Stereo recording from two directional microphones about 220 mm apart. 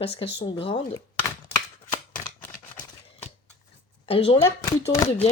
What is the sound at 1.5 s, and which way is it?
Shuffling cards, 20° left (ahead or behind).